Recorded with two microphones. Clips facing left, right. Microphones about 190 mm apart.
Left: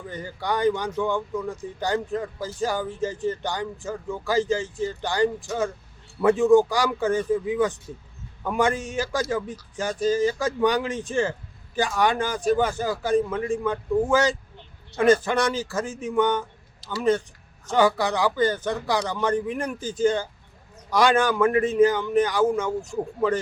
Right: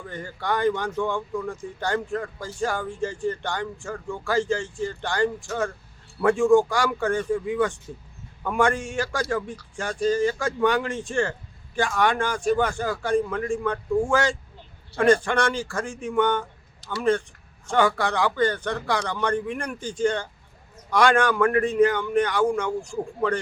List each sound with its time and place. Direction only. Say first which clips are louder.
0.3 s a man's voice: left 1 dB; centre (ahead or behind)
5.5 s speech: left 1 dB; 20° left (ahead or behind)
6.5 s a man's voice: left 1 dB; 5° left (ahead or behind)